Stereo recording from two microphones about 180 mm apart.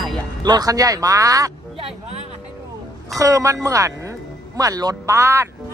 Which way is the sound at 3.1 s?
15° right (ahead or behind).